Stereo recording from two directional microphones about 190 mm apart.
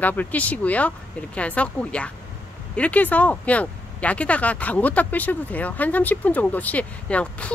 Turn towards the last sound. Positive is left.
turn(degrees=5)  # may be behind; listen again after turning